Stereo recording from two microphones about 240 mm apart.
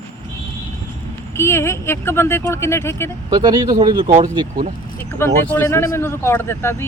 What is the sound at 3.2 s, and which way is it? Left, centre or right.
Speech, centre.